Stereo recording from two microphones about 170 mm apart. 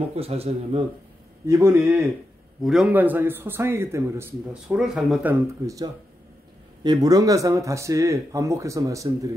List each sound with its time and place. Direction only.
0.1 s speech: 35° right (ahead or behind)
1.5 s a man's voice: 15° right (ahead or behind)
4.6 s a man's voice: 5° right (ahead or behind); by 9.3 s 20° right (ahead or behind)